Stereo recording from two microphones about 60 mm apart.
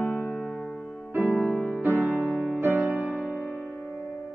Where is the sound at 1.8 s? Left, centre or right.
Right.